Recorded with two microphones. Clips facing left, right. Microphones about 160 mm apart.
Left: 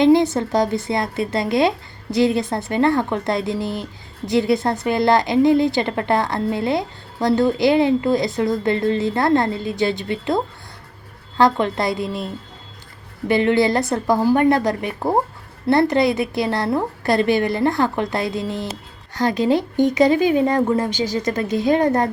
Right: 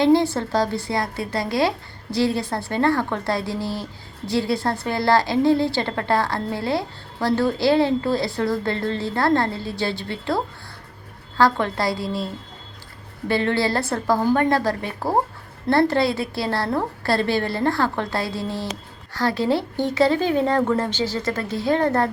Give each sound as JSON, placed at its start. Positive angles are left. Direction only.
{"t": 0.0, "sound": "speech", "side_deg": 20}